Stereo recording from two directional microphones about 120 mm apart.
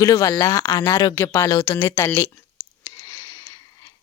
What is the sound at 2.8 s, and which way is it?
Wheeze, 25° left (ahead or behind).